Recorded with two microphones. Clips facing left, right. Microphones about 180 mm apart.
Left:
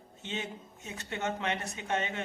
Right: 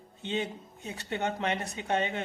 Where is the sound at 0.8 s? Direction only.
35° right (ahead or behind).